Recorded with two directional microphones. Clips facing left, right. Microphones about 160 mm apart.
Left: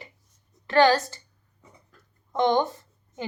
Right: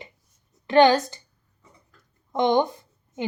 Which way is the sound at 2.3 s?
15° right (ahead or behind).